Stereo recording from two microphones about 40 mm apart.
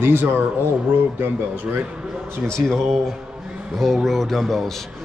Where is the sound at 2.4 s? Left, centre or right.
Centre.